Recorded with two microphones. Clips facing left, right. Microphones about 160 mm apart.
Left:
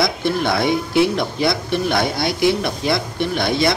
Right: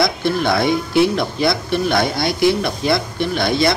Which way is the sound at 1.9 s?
5° left (ahead or behind).